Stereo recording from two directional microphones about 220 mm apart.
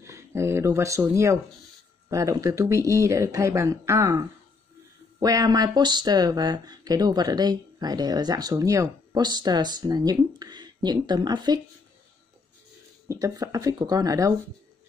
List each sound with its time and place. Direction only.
0.0 s speech: 10° right (ahead or behind)
13.1 s speech: 15° right (ahead or behind)